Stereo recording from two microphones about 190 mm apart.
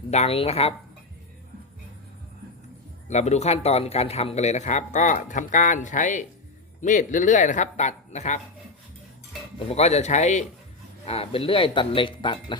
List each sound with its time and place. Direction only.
0.1 s speech: 35° left (ahead or behind)
3.1 s speech: 35° left (ahead or behind)
9.6 s speech: 35° left (ahead or behind)